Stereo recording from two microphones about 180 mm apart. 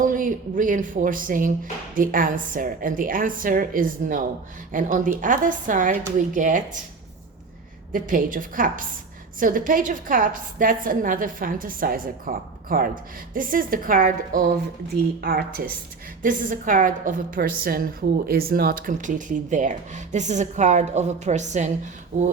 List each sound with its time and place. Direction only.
0.0 s a woman's voice: 45° right (ahead or behind)
7.9 s a woman's voice: 50° right (ahead or behind)